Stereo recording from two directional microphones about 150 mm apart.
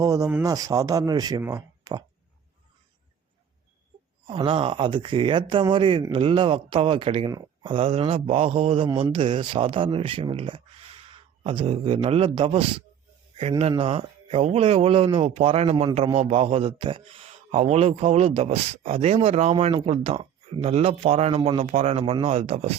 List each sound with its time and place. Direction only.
0.0 s speech: 25° right (ahead or behind)
1.8 s a sound: 25° right (ahead or behind)
4.3 s a man's voice: 35° right (ahead or behind)
7.3 s speech: 25° right (ahead or behind)
7.7 s a man's voice: 40° right (ahead or behind)
13.6 s a man's voice: 40° right (ahead or behind)